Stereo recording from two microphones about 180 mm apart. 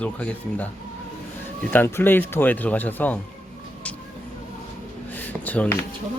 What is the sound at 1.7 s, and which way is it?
Speech, 10° left (ahead or behind).